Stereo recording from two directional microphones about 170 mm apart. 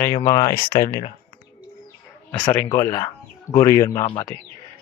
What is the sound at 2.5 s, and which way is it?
A man's voice, 20° left (ahead or behind).